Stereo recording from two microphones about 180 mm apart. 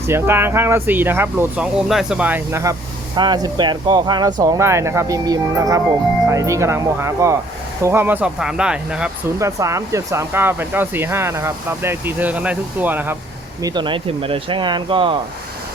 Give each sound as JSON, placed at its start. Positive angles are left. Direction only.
{"t": 0.1, "sound": "speech", "side_deg": -15}
{"t": 9.4, "sound": "speech", "side_deg": -15}
{"t": 13.6, "sound": "speech", "side_deg": -20}